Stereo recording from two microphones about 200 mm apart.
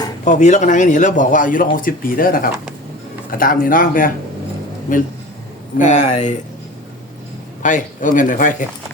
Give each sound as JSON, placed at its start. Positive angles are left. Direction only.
{"t": 0.3, "sound": "a man's voice", "side_deg": 35}
{"t": 5.7, "sound": "a man's voice", "side_deg": 35}
{"t": 7.6, "sound": "a man's voice", "side_deg": 40}